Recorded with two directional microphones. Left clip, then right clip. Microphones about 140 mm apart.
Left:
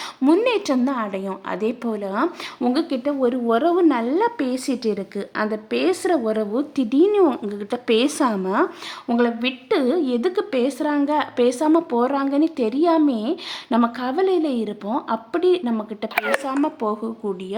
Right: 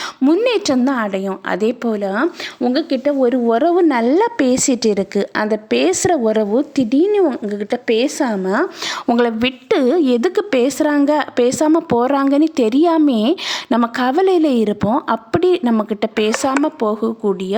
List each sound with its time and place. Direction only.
0.2 s a woman's voice: 25° right (ahead or behind)
0.4 s a woman's voice: 35° right (ahead or behind)
7.9 s a woman's voice: 15° right (ahead or behind)
8.4 s a woman's voice: 35° right (ahead or behind)
9.0 s a woman's voice: 70° right (ahead or behind); by 17.3 s 40° right (ahead or behind)